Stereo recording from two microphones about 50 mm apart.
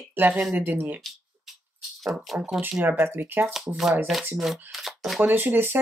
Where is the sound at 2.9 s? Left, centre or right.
Right.